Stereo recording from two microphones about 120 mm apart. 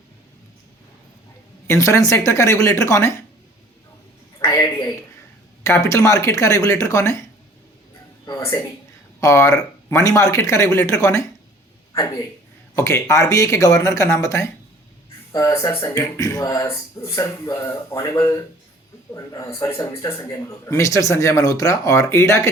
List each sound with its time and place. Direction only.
1.6 s speech: 25° left (ahead or behind)
4.4 s a sound: 25° left (ahead or behind)
5.6 s speech: 25° left (ahead or behind)
9.2 s speech: 25° left (ahead or behind)
12.7 s speech: 25° left (ahead or behind)